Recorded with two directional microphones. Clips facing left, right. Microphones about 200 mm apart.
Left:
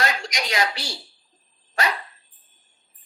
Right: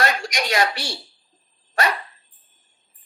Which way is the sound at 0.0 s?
55° right (ahead or behind).